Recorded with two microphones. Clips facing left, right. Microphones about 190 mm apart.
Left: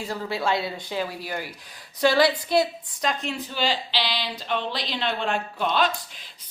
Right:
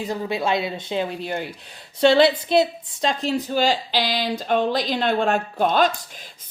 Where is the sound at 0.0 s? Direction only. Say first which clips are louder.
Right 3 dB; 20° right (ahead or behind).